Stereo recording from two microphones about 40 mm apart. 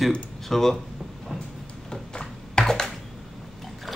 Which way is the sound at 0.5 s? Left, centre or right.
Centre.